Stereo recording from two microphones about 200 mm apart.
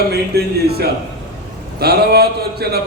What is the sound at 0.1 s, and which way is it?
A man's voice, 50° right (ahead or behind).